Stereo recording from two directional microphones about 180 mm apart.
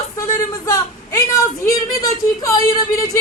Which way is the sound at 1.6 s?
20° left (ahead or behind).